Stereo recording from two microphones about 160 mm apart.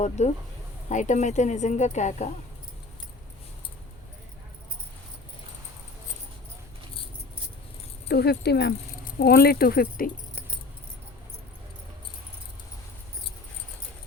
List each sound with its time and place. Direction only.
0.2 s speech: 45° left (ahead or behind)
8.0 s speech: 85° left
9.1 s speech: 75° left (ahead or behind)